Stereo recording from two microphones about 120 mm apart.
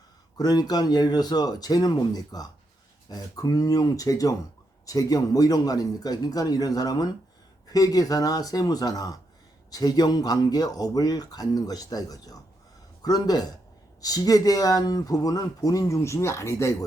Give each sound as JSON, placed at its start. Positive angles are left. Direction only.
{"t": 0.3, "sound": "speech", "side_deg": 35}